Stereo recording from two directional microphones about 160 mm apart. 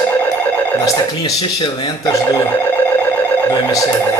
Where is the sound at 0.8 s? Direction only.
25° left (ahead or behind).